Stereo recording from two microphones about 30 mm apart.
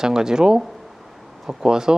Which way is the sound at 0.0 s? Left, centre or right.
Right.